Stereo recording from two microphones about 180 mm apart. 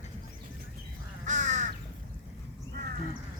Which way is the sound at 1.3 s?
45° right (ahead or behind).